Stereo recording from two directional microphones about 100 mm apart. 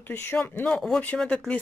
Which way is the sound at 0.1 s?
20° left (ahead or behind).